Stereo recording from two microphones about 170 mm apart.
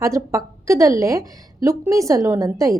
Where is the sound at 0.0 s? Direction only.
20° right (ahead or behind).